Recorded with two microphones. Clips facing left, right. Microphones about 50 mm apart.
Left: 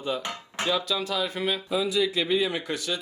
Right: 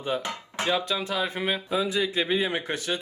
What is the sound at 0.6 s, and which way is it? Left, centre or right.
Speech, right.